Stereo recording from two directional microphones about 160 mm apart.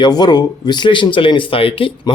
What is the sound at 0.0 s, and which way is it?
Speech, 25° left (ahead or behind).